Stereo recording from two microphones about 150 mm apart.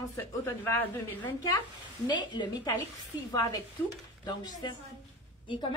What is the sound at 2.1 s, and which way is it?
A woman's voice, 30° left (ahead or behind).